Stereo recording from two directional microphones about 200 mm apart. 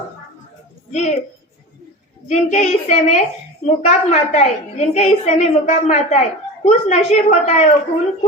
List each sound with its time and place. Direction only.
0.9 s a woman's voice: 35° left (ahead or behind)
2.2 s a woman's voice: 35° left (ahead or behind)